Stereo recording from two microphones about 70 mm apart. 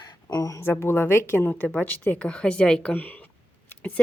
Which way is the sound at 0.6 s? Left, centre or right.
Left.